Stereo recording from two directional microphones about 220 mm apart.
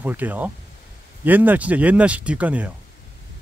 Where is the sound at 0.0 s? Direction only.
5° right (ahead or behind).